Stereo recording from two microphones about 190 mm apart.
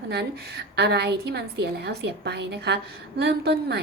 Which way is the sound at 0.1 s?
60° right (ahead or behind).